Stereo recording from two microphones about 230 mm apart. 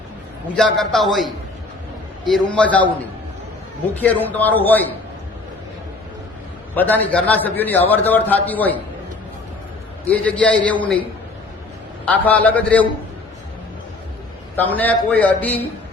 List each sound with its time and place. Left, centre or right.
0.5 s a man's voice: centre
4.0 s a man's voice: centre
6.7 s a man's voice: centre
10.1 s a man's voice: centre
12.0 s a man's voice: centre
14.5 s a man's voice: centre